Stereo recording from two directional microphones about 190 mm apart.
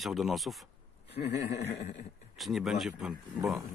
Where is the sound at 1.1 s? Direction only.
60° left (ahead or behind).